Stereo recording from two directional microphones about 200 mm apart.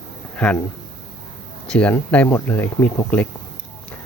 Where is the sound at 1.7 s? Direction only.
5° left (ahead or behind).